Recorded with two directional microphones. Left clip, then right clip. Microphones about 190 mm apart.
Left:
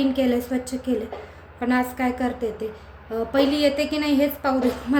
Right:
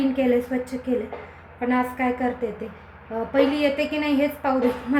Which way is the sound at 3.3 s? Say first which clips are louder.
Even; 15° left (ahead or behind).